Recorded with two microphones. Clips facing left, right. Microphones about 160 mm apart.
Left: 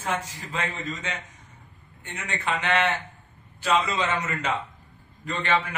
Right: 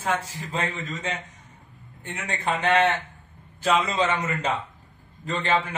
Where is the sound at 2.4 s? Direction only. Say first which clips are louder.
Right 4 dB; 35° right (ahead or behind).